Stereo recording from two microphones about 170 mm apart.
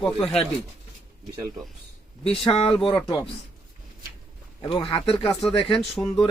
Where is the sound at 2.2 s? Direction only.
35° left (ahead or behind).